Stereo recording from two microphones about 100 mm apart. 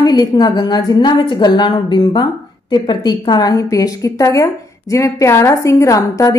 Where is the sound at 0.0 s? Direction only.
40° left (ahead or behind).